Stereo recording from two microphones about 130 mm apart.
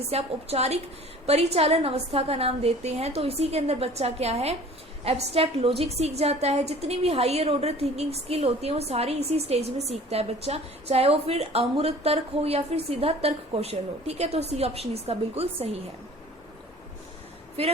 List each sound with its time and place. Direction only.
0.1 s a woman's voice: 55° right (ahead or behind)